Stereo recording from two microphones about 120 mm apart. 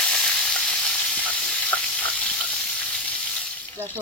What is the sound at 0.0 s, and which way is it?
Sizzle, 5° left (ahead or behind).